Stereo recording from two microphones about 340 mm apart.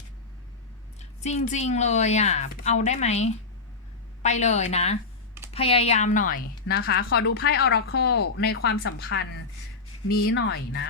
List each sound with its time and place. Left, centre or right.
0.9 s a woman's voice: centre